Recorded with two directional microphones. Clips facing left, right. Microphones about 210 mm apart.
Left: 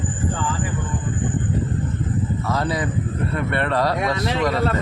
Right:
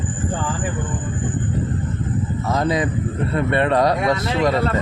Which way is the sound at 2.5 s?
20° right (ahead or behind).